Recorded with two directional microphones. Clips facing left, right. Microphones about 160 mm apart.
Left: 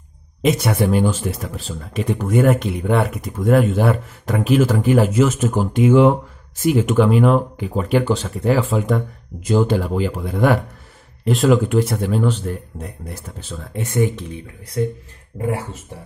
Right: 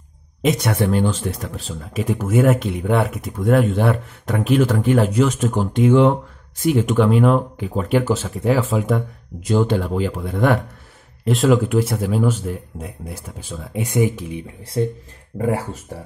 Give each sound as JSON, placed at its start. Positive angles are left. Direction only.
{"t": 0.4, "sound": "speech", "side_deg": 0}
{"t": 14.6, "sound": "speech", "side_deg": -25}